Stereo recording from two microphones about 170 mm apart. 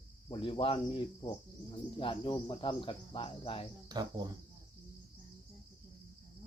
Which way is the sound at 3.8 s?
25° right (ahead or behind).